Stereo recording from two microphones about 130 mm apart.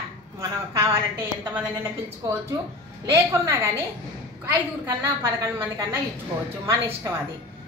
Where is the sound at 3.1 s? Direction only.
20° right (ahead or behind).